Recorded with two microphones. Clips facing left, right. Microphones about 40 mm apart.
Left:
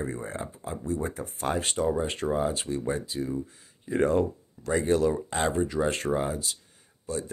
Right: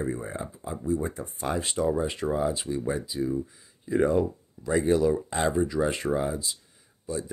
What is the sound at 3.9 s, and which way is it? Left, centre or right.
Speech, left.